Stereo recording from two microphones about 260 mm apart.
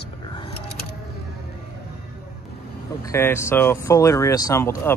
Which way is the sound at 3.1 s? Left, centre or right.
Centre.